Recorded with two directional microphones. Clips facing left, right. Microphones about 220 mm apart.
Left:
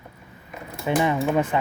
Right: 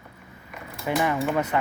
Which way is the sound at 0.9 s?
20° left (ahead or behind).